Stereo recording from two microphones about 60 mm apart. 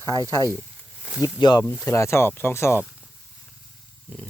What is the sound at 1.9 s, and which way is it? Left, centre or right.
Speech, left.